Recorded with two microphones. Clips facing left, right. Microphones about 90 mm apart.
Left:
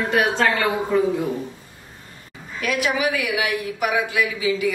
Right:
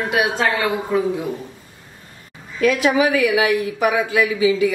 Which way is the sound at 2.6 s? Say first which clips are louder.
Right 6 dB; 35° right (ahead or behind).